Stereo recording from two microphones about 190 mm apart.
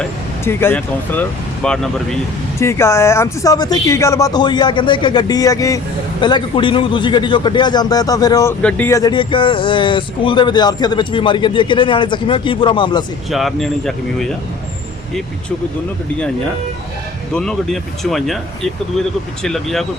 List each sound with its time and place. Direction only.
0.0 s speech: 10° left (ahead or behind)
2.6 s speech: 15° left (ahead or behind)
13.3 s speech: centre (ahead or behind)
17.3 s speech: 5° left (ahead or behind)